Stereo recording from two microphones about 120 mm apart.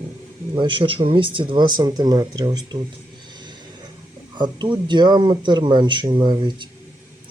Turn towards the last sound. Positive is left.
turn(degrees=-40)  # may be behind; listen again after turning